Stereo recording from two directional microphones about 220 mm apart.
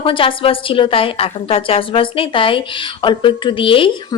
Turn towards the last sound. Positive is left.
turn(degrees=25)  # may be behind; listen again after turning